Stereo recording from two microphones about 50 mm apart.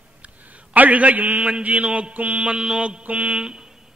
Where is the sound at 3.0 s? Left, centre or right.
Right.